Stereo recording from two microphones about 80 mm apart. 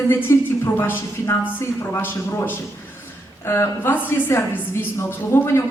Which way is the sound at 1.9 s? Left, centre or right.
Left.